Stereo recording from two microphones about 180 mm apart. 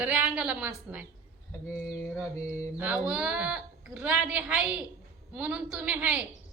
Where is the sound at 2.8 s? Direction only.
5° right (ahead or behind).